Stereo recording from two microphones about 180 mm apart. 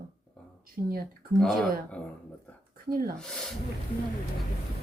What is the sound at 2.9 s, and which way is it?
Speech, 55° right (ahead or behind).